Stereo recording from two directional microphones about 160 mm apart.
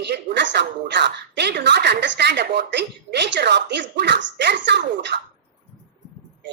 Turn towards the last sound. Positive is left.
turn(degrees=-90)